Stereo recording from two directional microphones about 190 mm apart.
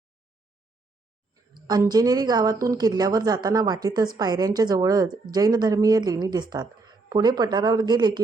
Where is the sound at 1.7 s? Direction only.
20° right (ahead or behind).